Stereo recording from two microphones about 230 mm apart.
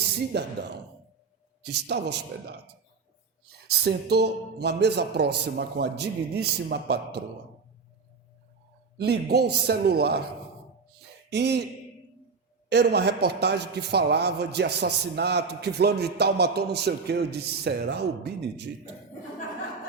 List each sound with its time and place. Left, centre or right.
0.3 s a man's voice: right
1.6 s a man's voice: right
3.7 s a man's voice: right
9.0 s a man's voice: right
11.3 s a man's voice: right
12.6 s a man's voice: right